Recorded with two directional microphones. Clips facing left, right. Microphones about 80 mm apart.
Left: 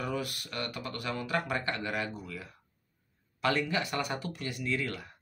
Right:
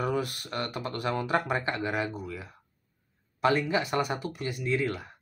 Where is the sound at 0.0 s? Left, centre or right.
Right.